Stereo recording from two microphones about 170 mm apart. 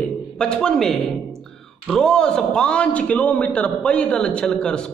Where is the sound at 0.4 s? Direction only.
5° left (ahead or behind).